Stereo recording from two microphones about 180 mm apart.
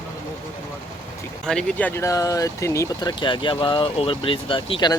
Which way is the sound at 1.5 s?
5° left (ahead or behind).